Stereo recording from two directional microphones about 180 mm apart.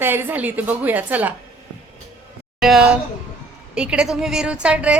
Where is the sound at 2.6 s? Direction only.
5° right (ahead or behind).